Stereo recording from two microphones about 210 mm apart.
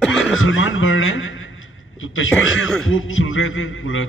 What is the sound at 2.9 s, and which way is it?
A man's voice, 70° left (ahead or behind).